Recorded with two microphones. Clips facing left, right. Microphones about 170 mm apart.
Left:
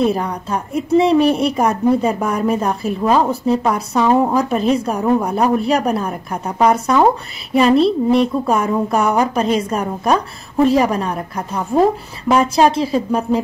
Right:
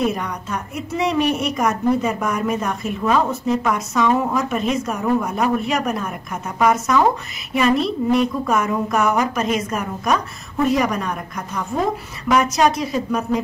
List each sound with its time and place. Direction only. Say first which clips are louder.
0.0 s a woman's voice: left 5 dB; 30° left (ahead or behind)